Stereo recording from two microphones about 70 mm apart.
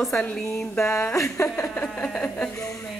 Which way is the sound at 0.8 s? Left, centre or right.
Left.